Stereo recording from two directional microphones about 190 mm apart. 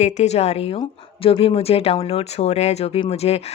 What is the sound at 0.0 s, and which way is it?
A woman's voice, 35° left (ahead or behind).